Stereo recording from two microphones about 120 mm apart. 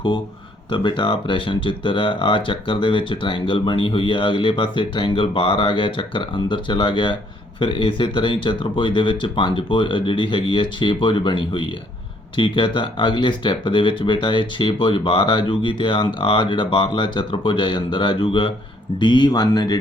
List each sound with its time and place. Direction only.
0.7 s speech: 40° left (ahead or behind)